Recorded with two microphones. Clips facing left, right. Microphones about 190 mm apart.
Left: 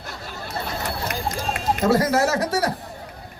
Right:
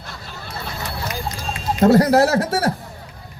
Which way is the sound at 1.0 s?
55° left (ahead or behind).